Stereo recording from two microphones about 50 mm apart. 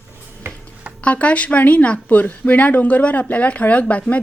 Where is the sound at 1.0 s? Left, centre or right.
Left.